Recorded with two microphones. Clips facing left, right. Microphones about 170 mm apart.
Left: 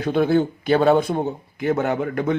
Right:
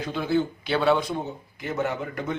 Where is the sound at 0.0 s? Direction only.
55° left (ahead or behind).